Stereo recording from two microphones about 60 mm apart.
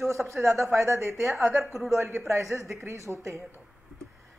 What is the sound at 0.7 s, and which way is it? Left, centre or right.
Speech, right.